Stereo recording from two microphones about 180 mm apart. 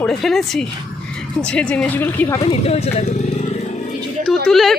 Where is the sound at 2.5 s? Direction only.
35° left (ahead or behind).